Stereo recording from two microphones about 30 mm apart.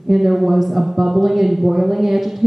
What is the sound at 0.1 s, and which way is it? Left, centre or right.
A woman's voice, centre.